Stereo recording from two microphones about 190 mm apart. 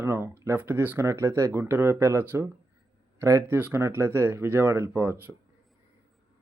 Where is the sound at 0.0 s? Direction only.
10° right (ahead or behind).